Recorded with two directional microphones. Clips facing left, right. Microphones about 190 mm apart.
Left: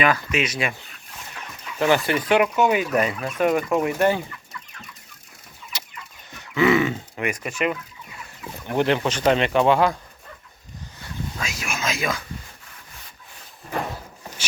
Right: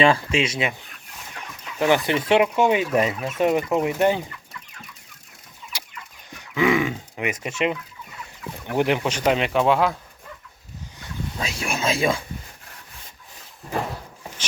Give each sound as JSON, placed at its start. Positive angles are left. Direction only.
{"t": 0.0, "sound": "speech", "side_deg": -30}
{"t": 2.0, "sound": "speech", "side_deg": -25}
{"t": 5.7, "sound": "chicken", "side_deg": -10}
{"t": 6.3, "sound": "grunt", "side_deg": -10}
{"t": 7.3, "sound": "speech", "side_deg": -25}
{"t": 11.3, "sound": "speech", "side_deg": -30}